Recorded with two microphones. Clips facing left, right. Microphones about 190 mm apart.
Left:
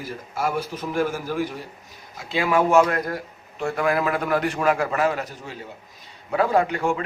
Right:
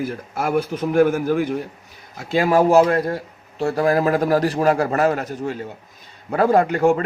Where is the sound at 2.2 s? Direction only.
45° right (ahead or behind).